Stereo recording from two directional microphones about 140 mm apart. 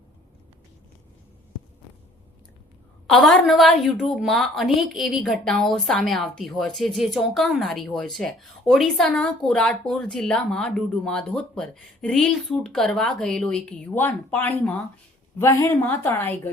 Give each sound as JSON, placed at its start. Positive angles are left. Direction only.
{"t": 3.1, "sound": "a woman's voice", "side_deg": 0}